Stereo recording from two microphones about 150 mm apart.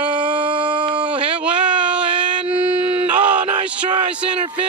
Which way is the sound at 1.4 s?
10° right (ahead or behind).